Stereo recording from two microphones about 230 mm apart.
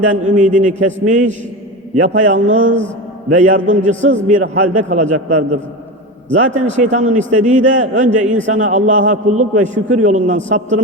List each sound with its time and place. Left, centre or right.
0.3 s a man's voice: right